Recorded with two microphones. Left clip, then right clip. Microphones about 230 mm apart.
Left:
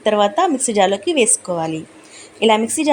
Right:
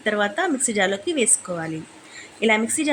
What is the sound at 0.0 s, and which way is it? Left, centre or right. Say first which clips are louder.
A woman's voice: left 7 dB; centre.